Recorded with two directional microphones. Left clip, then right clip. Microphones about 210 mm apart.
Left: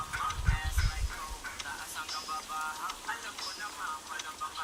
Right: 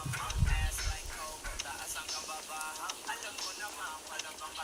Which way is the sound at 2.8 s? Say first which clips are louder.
Left 2 dB; 30° right (ahead or behind).